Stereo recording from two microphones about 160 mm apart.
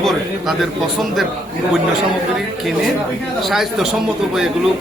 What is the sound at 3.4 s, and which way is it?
Speech, centre (ahead or behind).